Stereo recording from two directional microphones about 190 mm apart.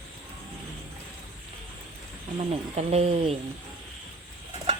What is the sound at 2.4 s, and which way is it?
Speech, 35° right (ahead or behind).